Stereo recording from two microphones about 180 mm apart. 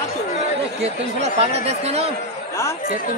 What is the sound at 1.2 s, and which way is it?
Speech, 35° right (ahead or behind).